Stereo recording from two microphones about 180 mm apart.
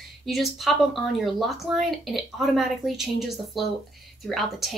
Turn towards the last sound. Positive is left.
turn(degrees=0)  # may be behind; listen again after turning